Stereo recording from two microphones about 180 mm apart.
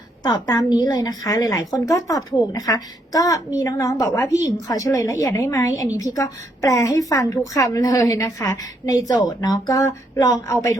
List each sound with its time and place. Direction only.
0.2 s a woman's voice: 20° left (ahead or behind)